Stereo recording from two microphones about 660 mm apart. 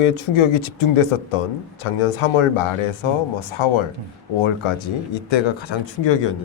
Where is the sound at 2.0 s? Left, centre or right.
Left.